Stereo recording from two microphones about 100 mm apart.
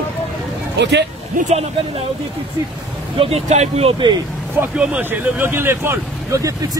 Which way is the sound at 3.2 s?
90° right.